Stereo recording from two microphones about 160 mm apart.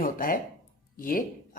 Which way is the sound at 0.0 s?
60° left (ahead or behind).